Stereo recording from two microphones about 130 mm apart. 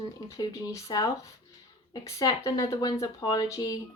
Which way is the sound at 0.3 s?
30° left (ahead or behind).